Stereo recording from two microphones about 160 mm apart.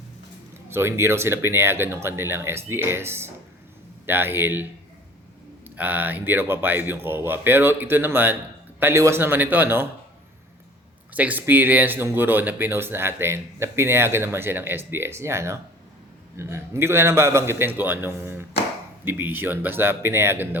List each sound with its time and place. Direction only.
0.7 s speech: 15° right (ahead or behind)
5.6 s speech: 10° right (ahead or behind)
11.1 s speech: 10° right (ahead or behind)